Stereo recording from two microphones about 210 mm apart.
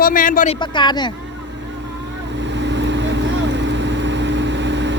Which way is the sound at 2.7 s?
60° right (ahead or behind).